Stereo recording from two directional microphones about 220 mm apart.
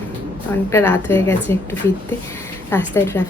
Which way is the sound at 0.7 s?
10° left (ahead or behind).